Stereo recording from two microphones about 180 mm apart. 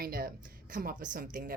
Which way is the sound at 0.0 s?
55° right (ahead or behind).